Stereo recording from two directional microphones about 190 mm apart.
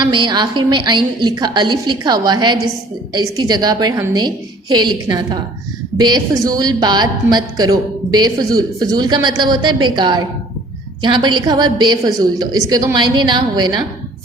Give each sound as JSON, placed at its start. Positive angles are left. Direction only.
{"t": 0.0, "sound": "a woman's voice", "side_deg": -25}